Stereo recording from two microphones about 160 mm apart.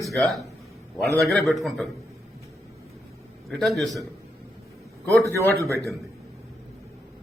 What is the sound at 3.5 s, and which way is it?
Speech, centre (ahead or behind).